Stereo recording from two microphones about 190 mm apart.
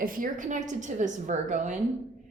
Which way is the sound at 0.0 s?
45° right (ahead or behind).